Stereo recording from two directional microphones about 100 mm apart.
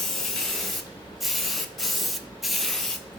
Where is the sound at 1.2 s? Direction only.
Centre (ahead or behind).